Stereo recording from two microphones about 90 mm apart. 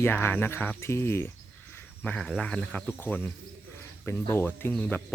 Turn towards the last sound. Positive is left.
turn(degrees=20)  # may be behind; listen again after turning